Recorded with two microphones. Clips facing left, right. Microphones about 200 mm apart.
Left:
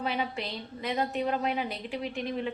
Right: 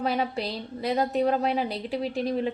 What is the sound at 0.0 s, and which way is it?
A woman's voice, 40° right (ahead or behind).